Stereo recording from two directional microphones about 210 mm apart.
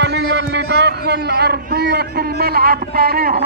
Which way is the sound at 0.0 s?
55° right (ahead or behind).